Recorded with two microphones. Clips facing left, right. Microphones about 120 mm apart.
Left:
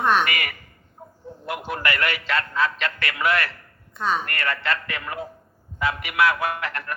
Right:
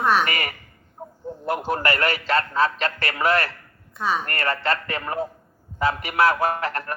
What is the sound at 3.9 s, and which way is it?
Speech, centre (ahead or behind).